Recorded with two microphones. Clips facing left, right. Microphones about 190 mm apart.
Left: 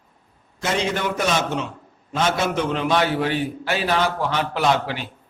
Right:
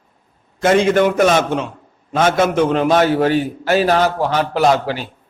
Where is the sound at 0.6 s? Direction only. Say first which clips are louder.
Right 10 dB; 50° right (ahead or behind).